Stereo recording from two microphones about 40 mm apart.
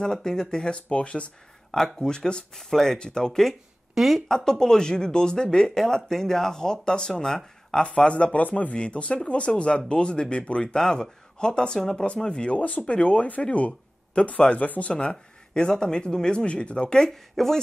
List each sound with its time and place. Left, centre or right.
0.0 s speech: centre
0.7 s speech: left
2.5 s speech: centre
3.9 s speech: centre
4.3 s speech: centre
7.8 s speech: left
8.7 s speech: left
12.5 s speech: left
12.9 s speech: left
15.0 s speech: left